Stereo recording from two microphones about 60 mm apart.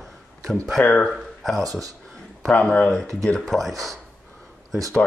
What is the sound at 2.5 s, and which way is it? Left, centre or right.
Speech, left.